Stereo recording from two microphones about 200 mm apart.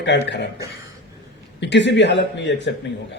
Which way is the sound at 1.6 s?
60° left (ahead or behind).